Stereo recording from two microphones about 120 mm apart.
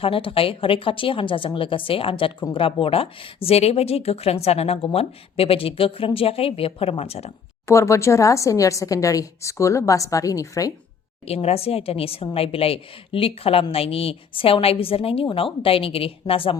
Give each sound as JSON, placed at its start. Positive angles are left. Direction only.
{"t": 0.0, "sound": "a woman's voice", "side_deg": 50}
{"t": 7.7, "sound": "a woman's voice", "side_deg": 25}
{"t": 11.3, "sound": "a woman's voice", "side_deg": 55}